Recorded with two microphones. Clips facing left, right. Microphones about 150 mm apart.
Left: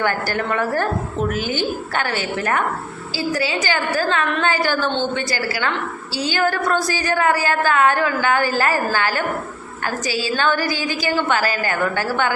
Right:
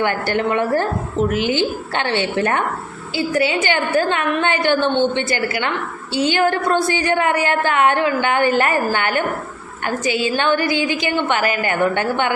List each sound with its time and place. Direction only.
0.0 s a woman's voice: 20° right (ahead or behind)